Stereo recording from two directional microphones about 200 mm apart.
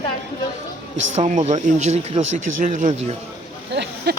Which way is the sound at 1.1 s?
35° right (ahead or behind).